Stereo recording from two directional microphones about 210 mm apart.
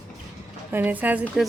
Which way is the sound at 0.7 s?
10° right (ahead or behind).